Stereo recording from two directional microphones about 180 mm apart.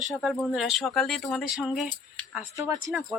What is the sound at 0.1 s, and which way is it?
Speech, centre (ahead or behind).